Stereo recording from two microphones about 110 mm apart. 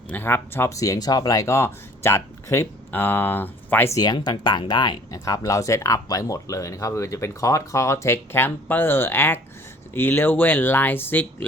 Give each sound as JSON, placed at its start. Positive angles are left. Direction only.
{"t": 0.1, "sound": "speech", "side_deg": 20}
{"t": 3.9, "sound": "speech", "side_deg": 40}
{"t": 5.2, "sound": "speech", "side_deg": 30}